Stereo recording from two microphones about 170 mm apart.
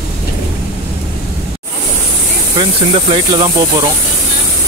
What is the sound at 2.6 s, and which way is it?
Speech, 30° right (ahead or behind).